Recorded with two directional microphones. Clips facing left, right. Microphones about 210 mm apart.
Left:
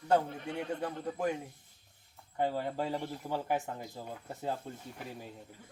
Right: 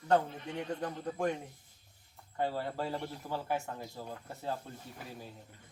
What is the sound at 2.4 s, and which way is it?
A man's voice, 15° left (ahead or behind).